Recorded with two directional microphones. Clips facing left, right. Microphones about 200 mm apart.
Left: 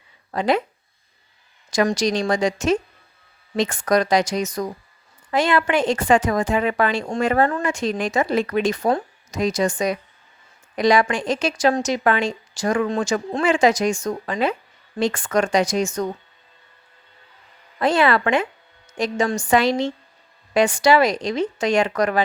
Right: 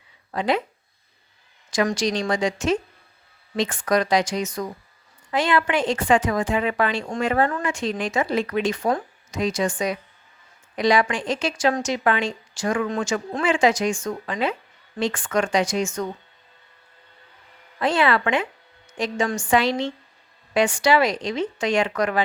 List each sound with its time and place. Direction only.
0.3 s speech: 45° left (ahead or behind)
1.7 s speech: 40° left (ahead or behind)
17.7 s speech: 40° left (ahead or behind)